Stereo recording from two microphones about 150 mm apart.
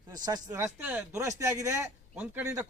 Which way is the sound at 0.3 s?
25° right (ahead or behind).